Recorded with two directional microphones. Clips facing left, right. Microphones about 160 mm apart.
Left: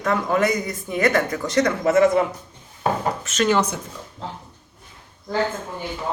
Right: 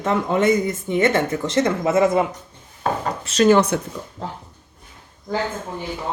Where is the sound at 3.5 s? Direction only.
60° right (ahead or behind).